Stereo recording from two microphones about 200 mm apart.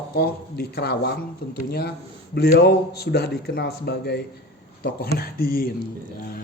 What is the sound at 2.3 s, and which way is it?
Speech, 50° left (ahead or behind).